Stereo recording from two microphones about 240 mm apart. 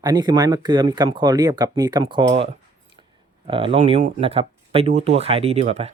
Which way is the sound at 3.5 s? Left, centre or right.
Right.